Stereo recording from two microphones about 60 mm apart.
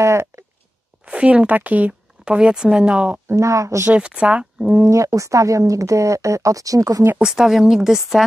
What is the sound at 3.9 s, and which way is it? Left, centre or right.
Speech, centre.